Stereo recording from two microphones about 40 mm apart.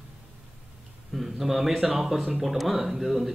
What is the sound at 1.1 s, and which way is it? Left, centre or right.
Speech, centre.